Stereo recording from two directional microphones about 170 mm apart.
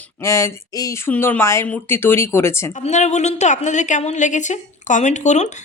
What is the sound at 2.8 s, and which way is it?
A woman's voice, 45° left (ahead or behind).